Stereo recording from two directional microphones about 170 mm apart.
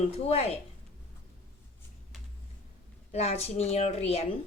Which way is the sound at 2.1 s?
Centre (ahead or behind).